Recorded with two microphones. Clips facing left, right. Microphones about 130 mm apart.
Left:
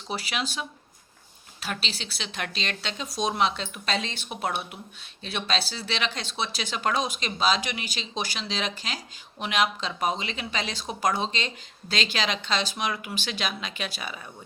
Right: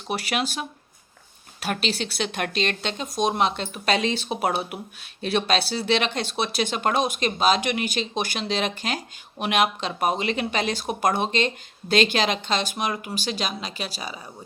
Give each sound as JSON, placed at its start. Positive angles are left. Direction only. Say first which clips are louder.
{"t": 0.1, "sound": "speech", "louder": "right 5 dB", "side_deg": -60}
{"t": 1.6, "sound": "speech", "louder": "right 8 dB", "side_deg": -55}